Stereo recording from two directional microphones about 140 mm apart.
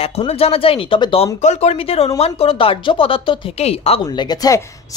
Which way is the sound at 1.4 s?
55° left (ahead or behind).